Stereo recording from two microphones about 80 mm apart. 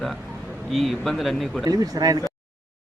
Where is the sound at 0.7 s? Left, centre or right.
Centre.